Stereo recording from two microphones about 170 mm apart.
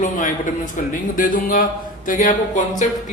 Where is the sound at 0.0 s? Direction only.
50° left (ahead or behind).